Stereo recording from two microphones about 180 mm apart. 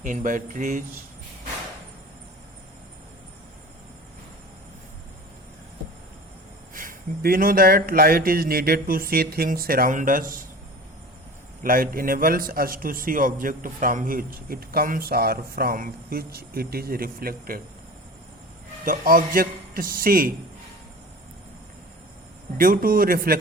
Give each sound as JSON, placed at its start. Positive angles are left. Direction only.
{"t": 0.0, "sound": "a man's voice", "side_deg": -45}
{"t": 6.7, "sound": "speech", "side_deg": -55}
{"t": 11.6, "sound": "a man's voice", "side_deg": -50}
{"t": 18.9, "sound": "a man's voice", "side_deg": -50}
{"t": 22.5, "sound": "a man's voice", "side_deg": -50}